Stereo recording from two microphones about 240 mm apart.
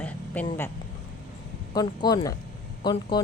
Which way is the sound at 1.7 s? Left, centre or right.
Centre.